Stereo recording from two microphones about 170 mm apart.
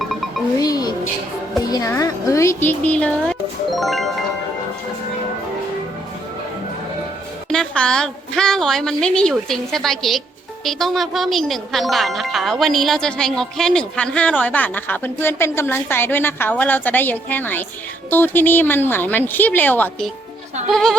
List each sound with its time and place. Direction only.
0.0 s music: centre (ahead or behind)
0.6 s music: 20° left (ahead or behind); by 4.2 s centre (ahead or behind)
7.5 s speech: 5° left (ahead or behind)